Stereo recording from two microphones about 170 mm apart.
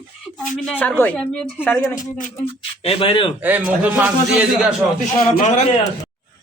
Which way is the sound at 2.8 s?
35° left (ahead or behind).